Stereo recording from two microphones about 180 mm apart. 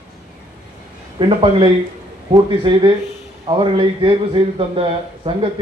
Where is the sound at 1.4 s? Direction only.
25° right (ahead or behind).